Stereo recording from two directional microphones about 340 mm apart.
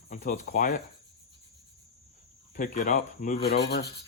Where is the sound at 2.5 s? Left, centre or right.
Left.